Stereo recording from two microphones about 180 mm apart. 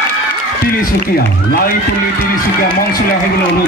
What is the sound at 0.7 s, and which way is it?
Speech, 55° left (ahead or behind).